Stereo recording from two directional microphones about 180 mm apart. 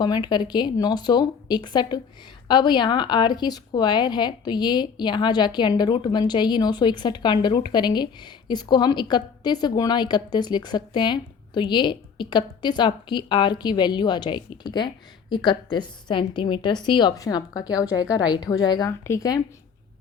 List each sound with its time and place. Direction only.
0.0 s speech: 25° left (ahead or behind)